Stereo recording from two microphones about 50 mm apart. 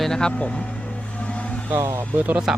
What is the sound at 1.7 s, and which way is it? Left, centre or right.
Speech, right.